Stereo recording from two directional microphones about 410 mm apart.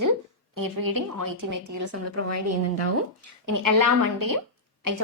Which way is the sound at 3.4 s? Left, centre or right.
Right.